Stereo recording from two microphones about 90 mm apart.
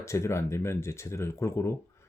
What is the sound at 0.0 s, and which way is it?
Speech, 30° left (ahead or behind).